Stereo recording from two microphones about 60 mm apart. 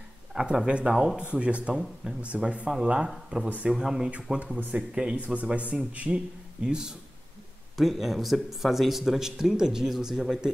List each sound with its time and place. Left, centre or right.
0.3 s a man's voice: centre
3.7 s a man's voice: centre
4.1 s a man's voice: right
7.7 s a man's voice: centre